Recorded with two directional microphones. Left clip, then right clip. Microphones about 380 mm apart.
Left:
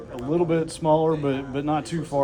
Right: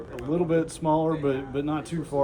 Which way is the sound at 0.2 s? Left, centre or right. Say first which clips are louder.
Left 2 dB; left.